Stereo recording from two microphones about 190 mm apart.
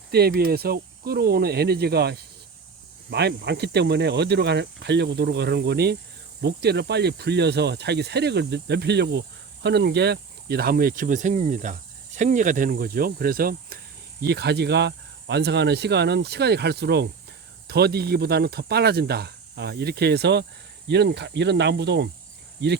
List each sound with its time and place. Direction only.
0.1 s speech: 55° right (ahead or behind)